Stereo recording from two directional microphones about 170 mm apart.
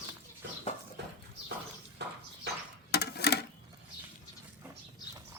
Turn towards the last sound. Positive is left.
turn(degrees=70)  # may be behind; listen again after turning